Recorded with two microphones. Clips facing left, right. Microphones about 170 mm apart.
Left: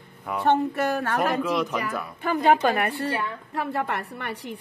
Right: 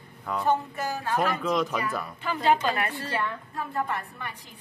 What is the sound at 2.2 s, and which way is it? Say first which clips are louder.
Speech: left 4 dB; 55° left (ahead or behind).